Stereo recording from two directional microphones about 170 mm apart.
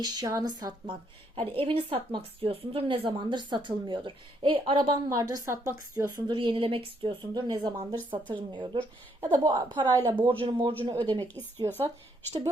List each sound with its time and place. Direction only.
0.0 s a woman's voice: 20° right (ahead or behind)
5.0 s a woman's voice: 20° right (ahead or behind)